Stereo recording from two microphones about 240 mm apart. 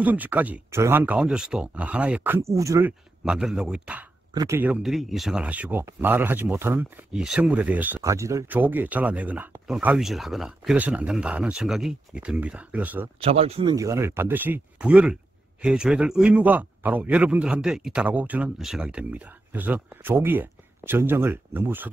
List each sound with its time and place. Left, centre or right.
0.0 s speech: centre
13.2 s speech: right; by 21.9 s centre